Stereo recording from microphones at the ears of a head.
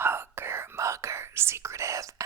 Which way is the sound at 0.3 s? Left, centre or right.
Right.